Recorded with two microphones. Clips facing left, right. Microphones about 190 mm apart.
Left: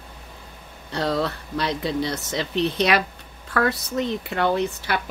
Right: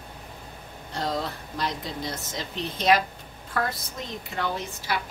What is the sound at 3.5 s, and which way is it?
Speech, 70° left (ahead or behind).